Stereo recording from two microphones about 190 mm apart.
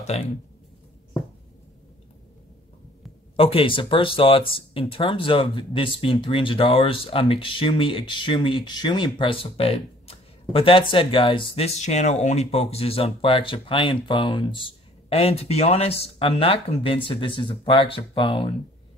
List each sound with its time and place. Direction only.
0.1 s speech: 35° left (ahead or behind)
3.3 s speech: 30° left (ahead or behind)